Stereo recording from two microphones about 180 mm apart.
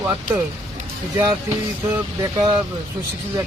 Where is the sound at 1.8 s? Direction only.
20° right (ahead or behind).